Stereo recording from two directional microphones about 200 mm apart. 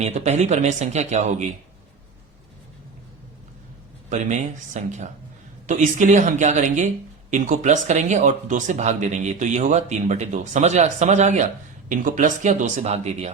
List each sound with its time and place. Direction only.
0.0 s speech: 35° right (ahead or behind)
4.1 s speech: 35° right (ahead or behind)